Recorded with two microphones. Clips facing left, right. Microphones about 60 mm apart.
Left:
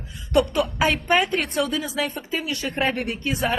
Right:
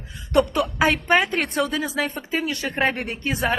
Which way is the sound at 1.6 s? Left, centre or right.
Right.